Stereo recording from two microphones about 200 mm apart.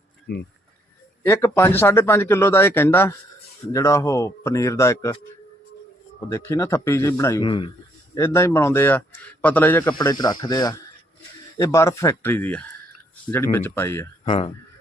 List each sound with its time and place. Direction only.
0.3 s speech: 55° left (ahead or behind)
1.2 s speech: 15° left (ahead or behind)
6.1 s speech: 15° left (ahead or behind)
8.1 s speech: 15° left (ahead or behind)
14.3 s speech: 25° left (ahead or behind)